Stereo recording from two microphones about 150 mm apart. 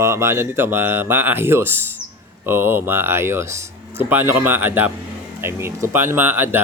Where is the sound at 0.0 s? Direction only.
20° right (ahead or behind).